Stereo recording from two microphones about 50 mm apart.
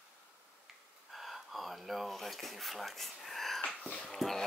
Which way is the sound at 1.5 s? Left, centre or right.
Centre.